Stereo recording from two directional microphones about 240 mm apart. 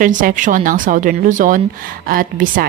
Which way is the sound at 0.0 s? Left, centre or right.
Right.